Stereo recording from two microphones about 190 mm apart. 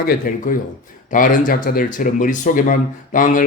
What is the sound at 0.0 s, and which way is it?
Speech, 50° left (ahead or behind).